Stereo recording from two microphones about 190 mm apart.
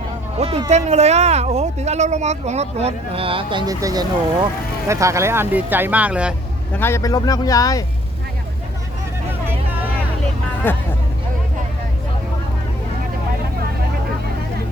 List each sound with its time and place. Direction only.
0.3 s speech: 30° right (ahead or behind); by 6.3 s 5° right (ahead or behind)
6.7 s speech: 15° left (ahead or behind)
10.6 s speech: 10° left (ahead or behind)